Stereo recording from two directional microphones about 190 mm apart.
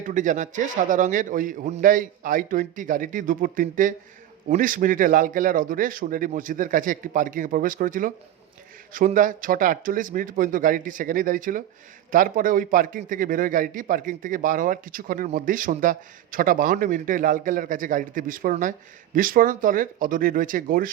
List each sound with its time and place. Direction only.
0.0 s a man's voice: 40° right (ahead or behind)